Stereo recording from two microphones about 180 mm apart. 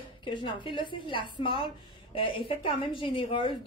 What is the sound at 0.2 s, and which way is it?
A woman's voice, 25° left (ahead or behind).